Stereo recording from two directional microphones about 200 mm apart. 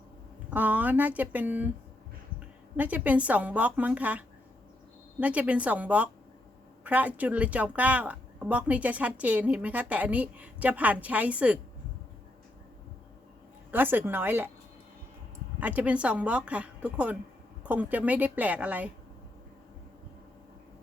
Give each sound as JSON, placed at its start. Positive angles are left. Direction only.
{"t": 0.5, "sound": "a woman's voice", "side_deg": -10}
{"t": 2.7, "sound": "a woman's voice", "side_deg": -10}
{"t": 5.2, "sound": "a woman's voice", "side_deg": -5}
{"t": 13.7, "sound": "a woman's voice", "side_deg": -10}
{"t": 15.6, "sound": "a woman's voice", "side_deg": -5}